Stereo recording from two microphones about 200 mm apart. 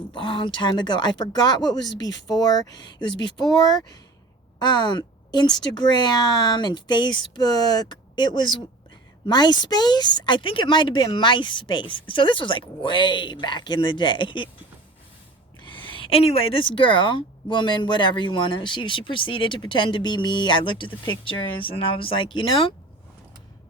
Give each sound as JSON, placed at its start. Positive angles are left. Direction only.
{"t": 0.1, "sound": "a woman's voice", "side_deg": 25}
{"t": 15.6, "sound": "a woman's voice", "side_deg": 25}